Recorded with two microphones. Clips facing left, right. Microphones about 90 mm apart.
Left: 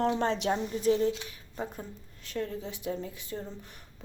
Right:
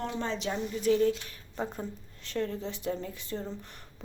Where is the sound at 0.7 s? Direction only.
35° left (ahead or behind).